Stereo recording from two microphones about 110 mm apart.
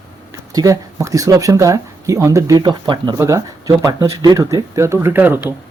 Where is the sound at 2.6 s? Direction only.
45° right (ahead or behind).